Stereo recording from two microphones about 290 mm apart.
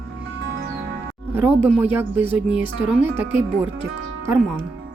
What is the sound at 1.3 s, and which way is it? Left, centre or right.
Speech, centre.